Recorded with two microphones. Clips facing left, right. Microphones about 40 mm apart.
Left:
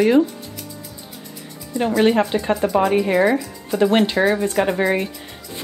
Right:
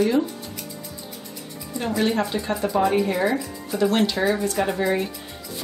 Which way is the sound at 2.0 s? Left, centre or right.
Left.